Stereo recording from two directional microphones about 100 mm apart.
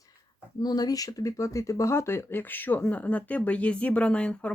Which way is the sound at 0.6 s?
40° left (ahead or behind).